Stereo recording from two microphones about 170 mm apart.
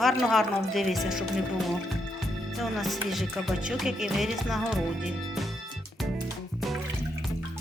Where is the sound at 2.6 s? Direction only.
Centre (ahead or behind).